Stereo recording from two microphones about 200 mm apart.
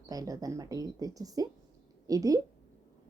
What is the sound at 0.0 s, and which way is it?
A woman's voice, 20° right (ahead or behind).